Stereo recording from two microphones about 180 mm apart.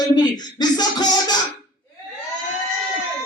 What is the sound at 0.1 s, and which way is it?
Speech, 20° left (ahead or behind).